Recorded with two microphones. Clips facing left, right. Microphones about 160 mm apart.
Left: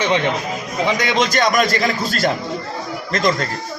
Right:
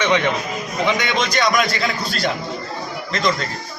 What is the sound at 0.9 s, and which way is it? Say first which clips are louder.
A man's voice: left 3 dB; 40° left (ahead or behind).